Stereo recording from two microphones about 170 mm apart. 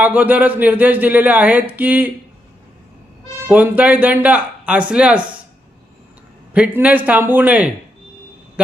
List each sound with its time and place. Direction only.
0.0 s speech: 10° right (ahead or behind)
3.4 s speech: 10° right (ahead or behind)
6.5 s speech: 10° right (ahead or behind)